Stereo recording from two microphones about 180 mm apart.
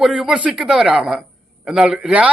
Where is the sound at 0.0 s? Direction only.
Centre (ahead or behind).